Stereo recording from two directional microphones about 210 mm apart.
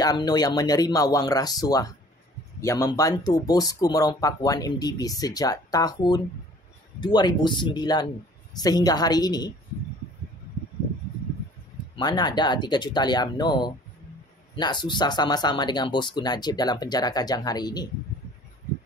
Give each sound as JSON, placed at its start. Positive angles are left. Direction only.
{"t": 0.0, "sound": "speech", "side_deg": 20}
{"t": 11.9, "sound": "speech", "side_deg": 20}